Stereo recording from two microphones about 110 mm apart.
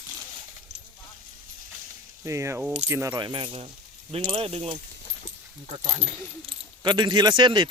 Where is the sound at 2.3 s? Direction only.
25° right (ahead or behind).